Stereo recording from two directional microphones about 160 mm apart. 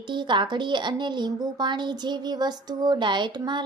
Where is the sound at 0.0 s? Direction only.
30° right (ahead or behind).